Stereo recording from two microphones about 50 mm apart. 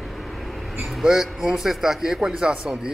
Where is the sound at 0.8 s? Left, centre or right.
Centre.